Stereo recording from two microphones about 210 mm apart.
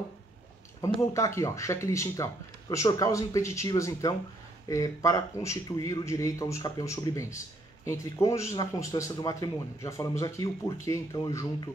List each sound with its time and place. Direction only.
0.7 s speech: 15° left (ahead or behind)